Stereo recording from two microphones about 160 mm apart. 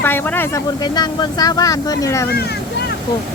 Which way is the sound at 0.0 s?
15° left (ahead or behind).